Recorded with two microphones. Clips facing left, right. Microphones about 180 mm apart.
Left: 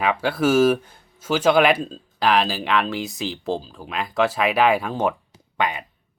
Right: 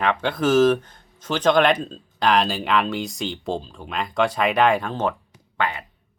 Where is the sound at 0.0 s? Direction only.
5° left (ahead or behind).